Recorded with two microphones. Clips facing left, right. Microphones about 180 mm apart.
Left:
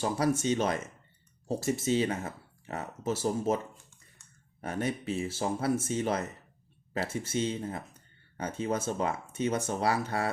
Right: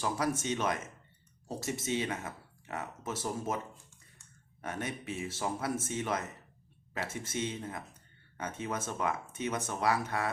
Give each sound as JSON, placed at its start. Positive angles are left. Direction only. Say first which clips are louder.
{"t": 0.0, "sound": "speech", "louder": "left 5 dB", "side_deg": 30}
{"t": 4.6, "sound": "speech", "louder": "left 6 dB", "side_deg": 30}